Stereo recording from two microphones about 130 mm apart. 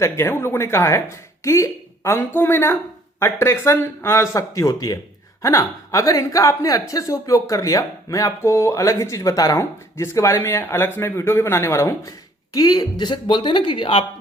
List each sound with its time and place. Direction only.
0.0 s a woman's voice: 20° left (ahead or behind); by 14.0 s 40° left (ahead or behind)